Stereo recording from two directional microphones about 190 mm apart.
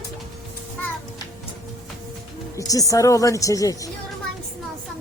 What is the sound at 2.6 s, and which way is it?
Speech, 15° left (ahead or behind).